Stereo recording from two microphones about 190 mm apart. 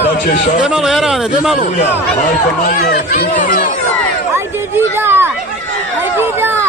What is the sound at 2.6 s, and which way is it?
Speech, 45° left (ahead or behind).